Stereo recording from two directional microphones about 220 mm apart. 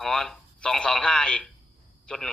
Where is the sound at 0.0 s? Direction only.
Centre (ahead or behind).